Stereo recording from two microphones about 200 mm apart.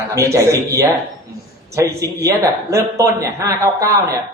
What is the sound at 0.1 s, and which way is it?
Speech, 15° right (ahead or behind).